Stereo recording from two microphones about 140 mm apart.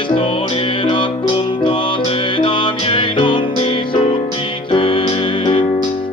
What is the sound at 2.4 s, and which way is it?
Music, 40° left (ahead or behind).